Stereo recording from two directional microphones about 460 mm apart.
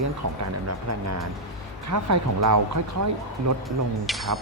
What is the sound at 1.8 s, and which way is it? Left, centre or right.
Speech, right.